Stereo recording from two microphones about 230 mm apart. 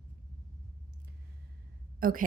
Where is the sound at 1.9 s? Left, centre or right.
Right.